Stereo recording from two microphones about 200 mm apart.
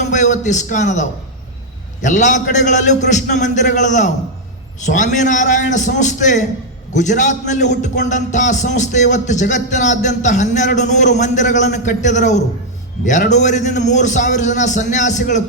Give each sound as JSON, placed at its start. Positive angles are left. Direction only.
{"t": 0.0, "sound": "a man's voice", "side_deg": 35}